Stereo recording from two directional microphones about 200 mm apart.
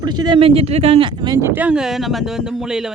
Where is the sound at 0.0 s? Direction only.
20° right (ahead or behind).